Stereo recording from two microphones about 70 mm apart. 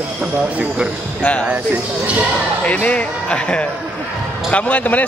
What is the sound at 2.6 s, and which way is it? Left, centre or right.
Speech, centre.